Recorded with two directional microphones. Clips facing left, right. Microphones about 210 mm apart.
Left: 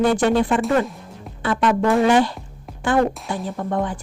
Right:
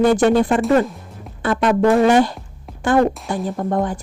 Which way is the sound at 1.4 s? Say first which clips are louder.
Right 2 dB; 45° right (ahead or behind).